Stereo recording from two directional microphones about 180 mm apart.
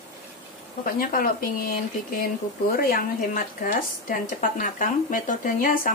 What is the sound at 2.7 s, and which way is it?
Speech, 55° left (ahead or behind).